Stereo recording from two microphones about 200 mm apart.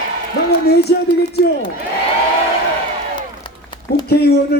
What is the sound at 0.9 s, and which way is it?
Speech, 55° left (ahead or behind).